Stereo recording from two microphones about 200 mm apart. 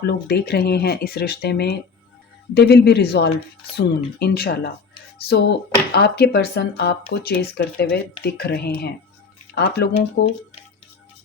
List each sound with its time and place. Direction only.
0.0 s a man's voice: 55° left (ahead or behind)